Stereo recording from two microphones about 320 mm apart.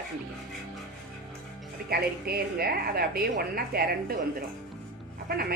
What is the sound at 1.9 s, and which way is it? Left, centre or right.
A woman's voice, right.